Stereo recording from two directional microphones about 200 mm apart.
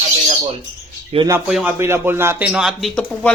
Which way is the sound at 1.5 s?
Centre (ahead or behind).